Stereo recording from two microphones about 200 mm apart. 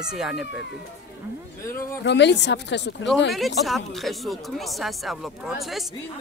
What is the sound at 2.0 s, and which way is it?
Speech, 60° left (ahead or behind).